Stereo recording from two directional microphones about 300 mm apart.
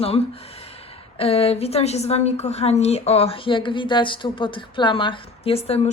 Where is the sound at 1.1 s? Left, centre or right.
Centre.